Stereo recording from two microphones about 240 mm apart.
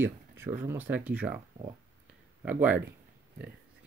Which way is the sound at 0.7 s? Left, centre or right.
Centre.